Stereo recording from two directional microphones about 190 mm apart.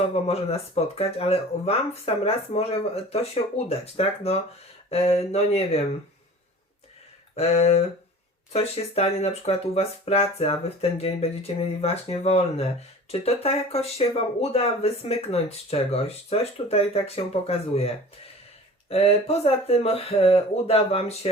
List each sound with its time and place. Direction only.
0.1 s speech: 35° left (ahead or behind)
7.3 s speech: 35° left (ahead or behind)